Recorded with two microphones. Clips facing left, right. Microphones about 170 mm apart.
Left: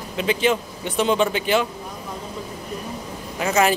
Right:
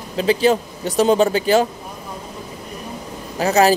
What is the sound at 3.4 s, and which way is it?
Speech, 35° right (ahead or behind).